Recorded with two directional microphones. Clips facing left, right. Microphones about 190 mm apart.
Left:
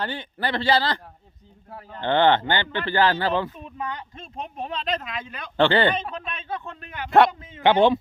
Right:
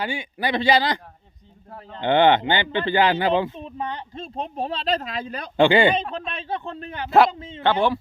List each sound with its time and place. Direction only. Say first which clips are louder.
0.0 s speech: right 2 dB; 10° right (ahead or behind)
3.6 s speech: right 2 dB; 30° right (ahead or behind)
5.5 s speech: right 3 dB; 10° right (ahead or behind)
6.1 s speech: right 3 dB; 30° right (ahead or behind)
7.6 s a man's voice: left 3 dB; 20° left (ahead or behind)